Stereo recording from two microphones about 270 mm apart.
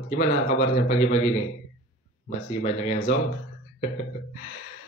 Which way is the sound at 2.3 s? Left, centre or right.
Left.